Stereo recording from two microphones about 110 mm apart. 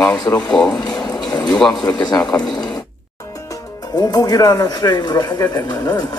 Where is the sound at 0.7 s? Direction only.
40° left (ahead or behind).